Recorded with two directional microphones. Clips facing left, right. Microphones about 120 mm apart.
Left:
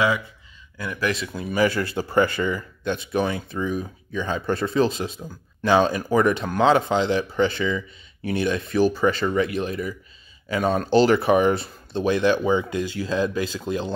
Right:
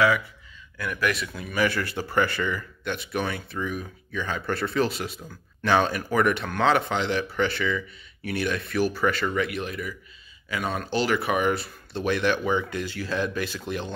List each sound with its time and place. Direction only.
0.7 s speech: 25° left (ahead or behind)